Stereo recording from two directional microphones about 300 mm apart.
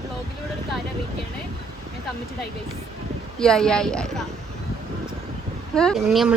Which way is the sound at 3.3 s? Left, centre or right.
Centre.